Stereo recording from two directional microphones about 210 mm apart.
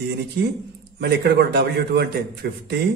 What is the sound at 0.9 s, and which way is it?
A man's voice, 50° right (ahead or behind).